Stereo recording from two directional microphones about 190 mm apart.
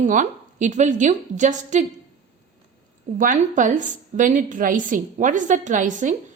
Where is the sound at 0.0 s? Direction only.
40° right (ahead or behind).